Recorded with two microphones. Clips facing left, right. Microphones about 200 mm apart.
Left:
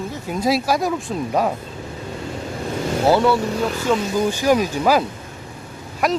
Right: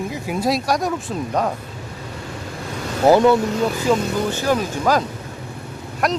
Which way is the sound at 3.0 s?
15° right (ahead or behind).